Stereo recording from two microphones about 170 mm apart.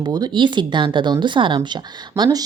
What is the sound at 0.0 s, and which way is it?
A woman's voice, 25° right (ahead or behind).